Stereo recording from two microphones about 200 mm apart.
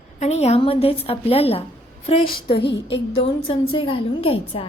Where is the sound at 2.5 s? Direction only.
60° left (ahead or behind).